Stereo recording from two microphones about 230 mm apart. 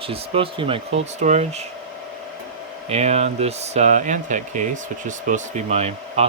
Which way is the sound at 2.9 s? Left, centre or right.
Right.